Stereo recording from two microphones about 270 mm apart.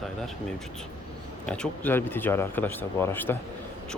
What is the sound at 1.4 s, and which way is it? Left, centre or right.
Speech, centre.